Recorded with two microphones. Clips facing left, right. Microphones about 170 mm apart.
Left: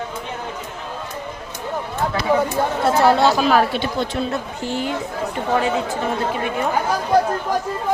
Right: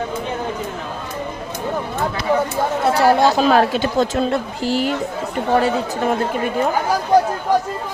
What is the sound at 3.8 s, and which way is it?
Speech, 45° right (ahead or behind).